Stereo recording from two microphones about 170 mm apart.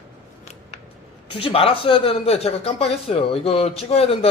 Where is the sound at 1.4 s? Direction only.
30° left (ahead or behind).